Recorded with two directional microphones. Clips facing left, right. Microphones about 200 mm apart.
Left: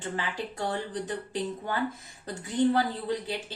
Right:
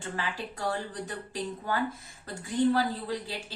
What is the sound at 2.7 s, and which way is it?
Speech, 20° left (ahead or behind).